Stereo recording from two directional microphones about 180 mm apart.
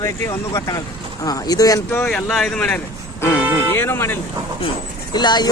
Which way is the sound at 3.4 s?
10° right (ahead or behind).